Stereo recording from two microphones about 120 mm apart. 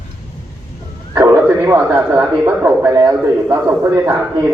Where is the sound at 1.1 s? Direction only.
25° right (ahead or behind).